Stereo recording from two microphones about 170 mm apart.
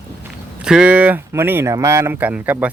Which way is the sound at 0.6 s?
5° right (ahead or behind).